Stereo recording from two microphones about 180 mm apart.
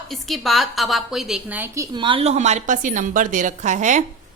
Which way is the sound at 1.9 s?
25° right (ahead or behind).